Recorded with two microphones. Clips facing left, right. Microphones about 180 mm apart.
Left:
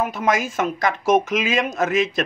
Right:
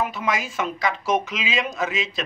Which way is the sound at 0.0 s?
45° left (ahead or behind).